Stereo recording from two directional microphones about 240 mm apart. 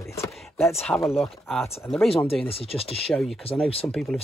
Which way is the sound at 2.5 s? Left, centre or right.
Left.